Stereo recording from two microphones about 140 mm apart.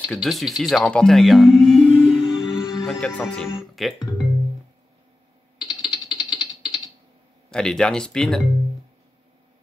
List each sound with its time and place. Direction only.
0.1 s speech: centre (ahead or behind)
2.1 s music: 5° right (ahead or behind)
3.1 s speech: 10° left (ahead or behind)
5.6 s typing: 5° right (ahead or behind)
7.5 s speech: 5° left (ahead or behind)